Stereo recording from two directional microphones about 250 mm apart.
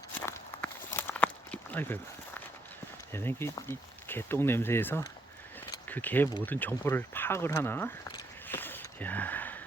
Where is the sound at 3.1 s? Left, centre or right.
Centre.